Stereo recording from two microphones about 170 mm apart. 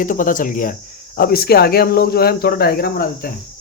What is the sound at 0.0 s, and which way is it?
Speech, 50° left (ahead or behind).